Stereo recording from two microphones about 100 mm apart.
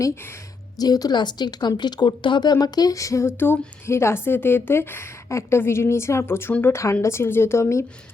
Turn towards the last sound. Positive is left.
turn(degrees=25)  # may be behind; listen again after turning